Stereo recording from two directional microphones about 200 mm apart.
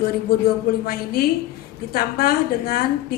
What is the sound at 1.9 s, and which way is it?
Speech, 50° left (ahead or behind).